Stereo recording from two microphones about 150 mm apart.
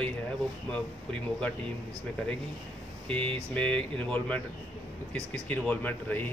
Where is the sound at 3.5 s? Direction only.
10° left (ahead or behind).